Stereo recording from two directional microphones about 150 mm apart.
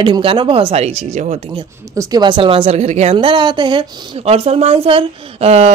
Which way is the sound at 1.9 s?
30° right (ahead or behind).